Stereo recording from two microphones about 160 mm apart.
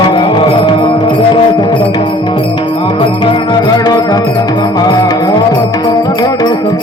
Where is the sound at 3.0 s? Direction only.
35° left (ahead or behind).